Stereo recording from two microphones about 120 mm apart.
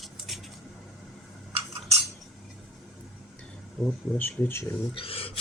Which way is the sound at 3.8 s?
15° left (ahead or behind).